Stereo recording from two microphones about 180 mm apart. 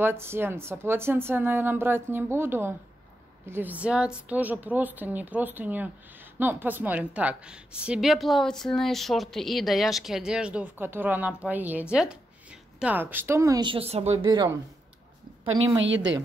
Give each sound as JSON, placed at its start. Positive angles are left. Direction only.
{"t": 0.0, "sound": "a woman's voice", "side_deg": -15}
{"t": 15.8, "sound": "a woman's voice", "side_deg": -90}